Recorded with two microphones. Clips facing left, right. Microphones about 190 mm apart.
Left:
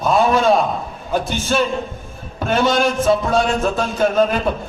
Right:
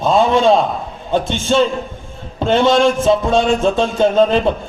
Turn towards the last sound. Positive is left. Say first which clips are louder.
# right 4 dB
turn(degrees=-25)  # may be behind; listen again after turning